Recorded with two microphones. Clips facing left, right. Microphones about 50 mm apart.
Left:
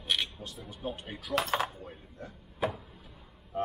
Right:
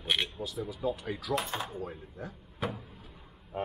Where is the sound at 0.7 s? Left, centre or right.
Right.